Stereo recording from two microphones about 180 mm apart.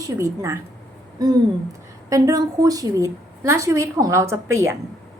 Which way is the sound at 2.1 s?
20° right (ahead or behind).